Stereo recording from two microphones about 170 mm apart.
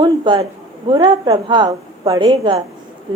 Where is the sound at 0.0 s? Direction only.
30° right (ahead or behind).